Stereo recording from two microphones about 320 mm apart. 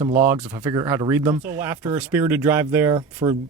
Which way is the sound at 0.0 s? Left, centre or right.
Centre.